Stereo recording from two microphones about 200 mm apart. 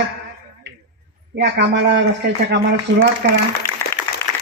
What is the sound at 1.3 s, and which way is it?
Speech, 60° right (ahead or behind).